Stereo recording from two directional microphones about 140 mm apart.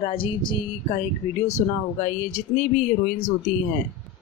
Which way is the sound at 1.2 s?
50° left (ahead or behind).